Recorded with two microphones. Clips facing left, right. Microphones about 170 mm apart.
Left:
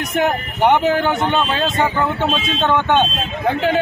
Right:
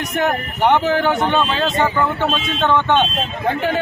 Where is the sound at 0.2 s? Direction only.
15° left (ahead or behind).